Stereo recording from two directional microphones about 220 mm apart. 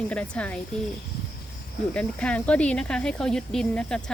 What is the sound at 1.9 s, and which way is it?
Speech, 5° left (ahead or behind).